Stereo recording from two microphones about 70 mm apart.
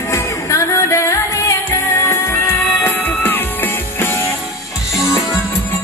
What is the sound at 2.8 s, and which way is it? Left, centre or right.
Music, left.